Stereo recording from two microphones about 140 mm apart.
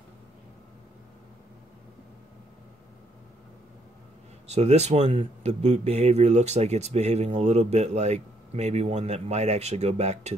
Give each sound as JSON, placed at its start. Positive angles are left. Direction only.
{"t": 4.5, "sound": "speech", "side_deg": -50}